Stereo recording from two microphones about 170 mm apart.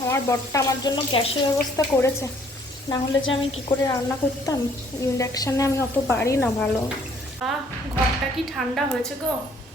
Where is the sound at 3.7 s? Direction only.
30° left (ahead or behind).